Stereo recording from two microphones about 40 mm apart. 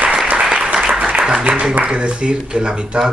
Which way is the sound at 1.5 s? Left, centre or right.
Right.